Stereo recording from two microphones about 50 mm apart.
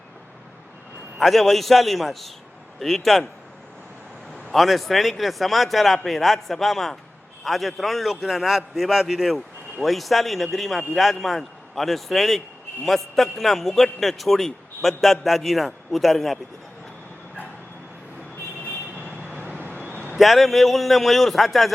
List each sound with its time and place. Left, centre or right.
1.2 s a man's voice: centre
4.5 s a man's voice: centre
19.5 s vehicle: left
20.1 s a man's voice: centre